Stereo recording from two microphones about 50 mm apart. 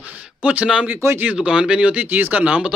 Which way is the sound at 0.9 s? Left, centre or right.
Right.